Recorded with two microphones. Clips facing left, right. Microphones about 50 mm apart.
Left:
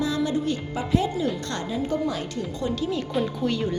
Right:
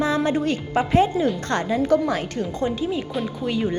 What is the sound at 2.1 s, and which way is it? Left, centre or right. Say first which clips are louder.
Speech: right 5 dB; right.